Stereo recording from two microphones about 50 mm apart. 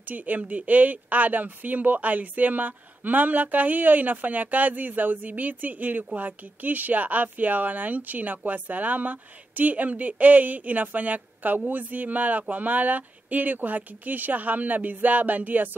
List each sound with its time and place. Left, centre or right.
0.1 s speech: right